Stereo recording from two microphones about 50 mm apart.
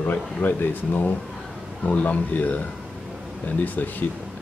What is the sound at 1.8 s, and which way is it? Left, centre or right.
Speech, left.